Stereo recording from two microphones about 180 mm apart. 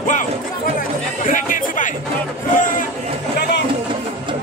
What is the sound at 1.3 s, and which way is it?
Chatter, 50° left (ahead or behind).